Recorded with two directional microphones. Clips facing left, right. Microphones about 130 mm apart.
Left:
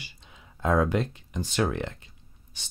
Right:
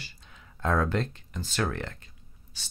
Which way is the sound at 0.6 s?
15° left (ahead or behind).